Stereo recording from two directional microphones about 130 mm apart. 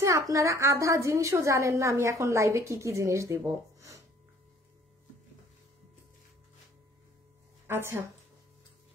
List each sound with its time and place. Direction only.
0.0 s a woman's voice: 25° right (ahead or behind)
7.6 s speech: 20° right (ahead or behind)